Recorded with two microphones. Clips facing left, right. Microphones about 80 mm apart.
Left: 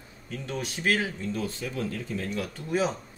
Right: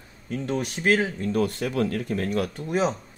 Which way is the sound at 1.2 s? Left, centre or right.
Right.